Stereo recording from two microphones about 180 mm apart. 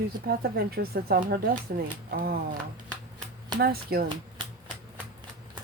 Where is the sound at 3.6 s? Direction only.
60° right (ahead or behind).